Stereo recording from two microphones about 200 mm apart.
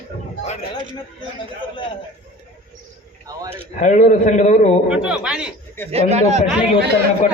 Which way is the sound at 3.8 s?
35° left (ahead or behind).